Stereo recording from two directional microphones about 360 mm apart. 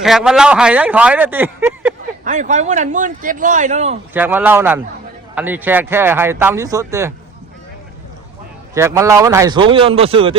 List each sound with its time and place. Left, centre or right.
0.0 s speech: centre
2.2 s speech: centre
4.1 s speech: centre
8.7 s speech: centre